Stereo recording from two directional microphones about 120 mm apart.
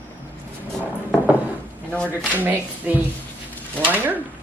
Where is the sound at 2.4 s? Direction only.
15° right (ahead or behind).